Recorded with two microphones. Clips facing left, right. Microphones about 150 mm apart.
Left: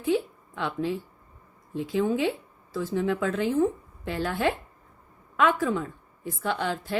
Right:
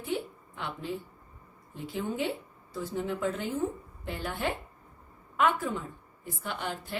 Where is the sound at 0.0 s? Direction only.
90° left.